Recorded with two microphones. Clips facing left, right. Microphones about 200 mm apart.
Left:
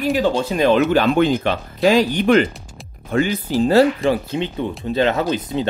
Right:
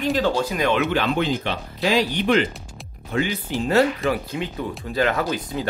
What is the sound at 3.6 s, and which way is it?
Speech, 30° left (ahead or behind).